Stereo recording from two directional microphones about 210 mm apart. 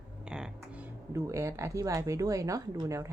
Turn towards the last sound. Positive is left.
turn(degrees=-15)  # may be behind; listen again after turning